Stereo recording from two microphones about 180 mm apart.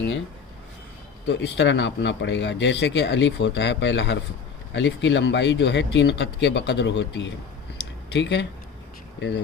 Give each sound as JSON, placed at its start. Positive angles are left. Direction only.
{"t": 1.3, "sound": "speech", "side_deg": 80}